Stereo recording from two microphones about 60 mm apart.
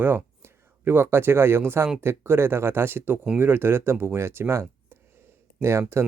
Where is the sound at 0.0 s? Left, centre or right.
Right.